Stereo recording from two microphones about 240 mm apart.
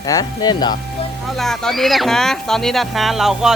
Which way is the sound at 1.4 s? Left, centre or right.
Centre.